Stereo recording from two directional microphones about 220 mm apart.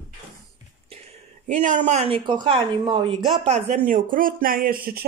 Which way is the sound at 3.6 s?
35° right (ahead or behind).